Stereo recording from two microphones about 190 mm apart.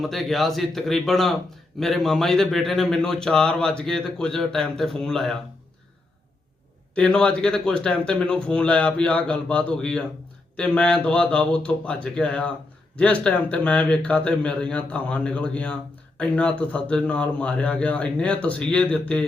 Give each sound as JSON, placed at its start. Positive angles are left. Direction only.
{"t": 0.0, "sound": "speech", "side_deg": 0}
{"t": 6.9, "sound": "speech", "side_deg": 5}